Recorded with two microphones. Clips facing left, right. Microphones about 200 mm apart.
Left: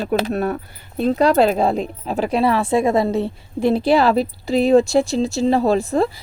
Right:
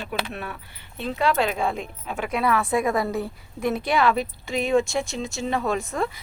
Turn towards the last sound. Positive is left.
turn(degrees=35)  # may be behind; listen again after turning